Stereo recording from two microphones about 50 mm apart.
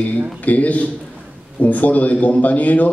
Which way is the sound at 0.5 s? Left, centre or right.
Left.